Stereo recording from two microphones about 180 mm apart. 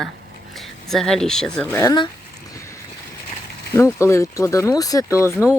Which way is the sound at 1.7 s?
20° left (ahead or behind).